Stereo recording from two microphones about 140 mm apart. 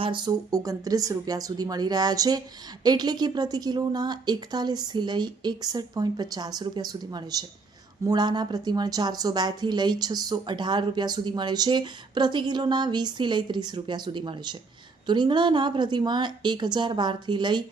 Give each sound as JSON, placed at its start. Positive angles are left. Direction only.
{"t": 0.0, "sound": "a woman's voice", "side_deg": -30}